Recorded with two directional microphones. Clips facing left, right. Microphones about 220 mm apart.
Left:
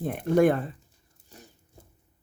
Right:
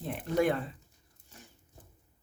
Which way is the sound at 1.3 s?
35° left (ahead or behind).